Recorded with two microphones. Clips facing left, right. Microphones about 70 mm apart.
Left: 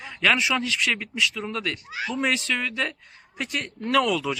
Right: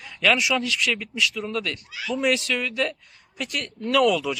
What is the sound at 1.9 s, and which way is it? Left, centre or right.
Speech, left.